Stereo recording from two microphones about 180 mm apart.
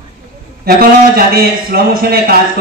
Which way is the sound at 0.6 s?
55° right (ahead or behind).